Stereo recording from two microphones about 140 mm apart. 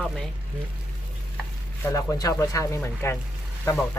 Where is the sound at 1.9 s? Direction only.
25° left (ahead or behind).